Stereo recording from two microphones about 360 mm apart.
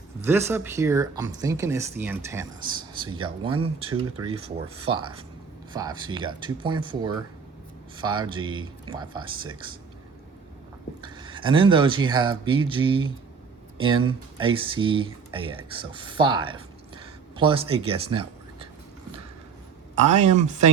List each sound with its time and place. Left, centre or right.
0.2 s speech: centre
11.0 s speech: centre
14.1 s speech: centre
20.1 s speech: centre